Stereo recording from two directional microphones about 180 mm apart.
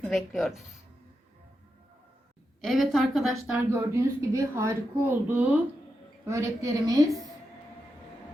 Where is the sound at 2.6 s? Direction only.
Centre (ahead or behind); by 7.0 s 20° right (ahead or behind).